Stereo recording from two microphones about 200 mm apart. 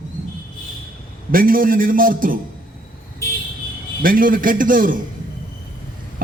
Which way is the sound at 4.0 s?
45° right (ahead or behind).